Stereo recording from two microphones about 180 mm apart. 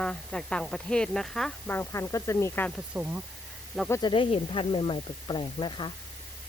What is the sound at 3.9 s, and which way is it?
Speech, 25° left (ahead or behind).